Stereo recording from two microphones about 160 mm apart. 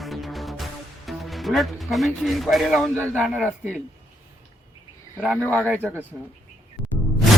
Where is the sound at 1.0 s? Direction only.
Centre (ahead or behind).